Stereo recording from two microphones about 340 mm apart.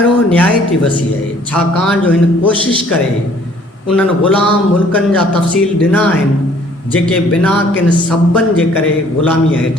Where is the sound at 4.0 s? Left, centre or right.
Centre.